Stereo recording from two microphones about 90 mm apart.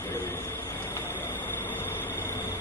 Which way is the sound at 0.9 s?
25° left (ahead or behind).